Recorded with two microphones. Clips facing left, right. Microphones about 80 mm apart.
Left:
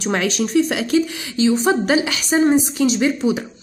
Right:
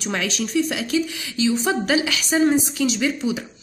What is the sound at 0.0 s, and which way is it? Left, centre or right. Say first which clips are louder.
A woman's voice: left 5 dB; left.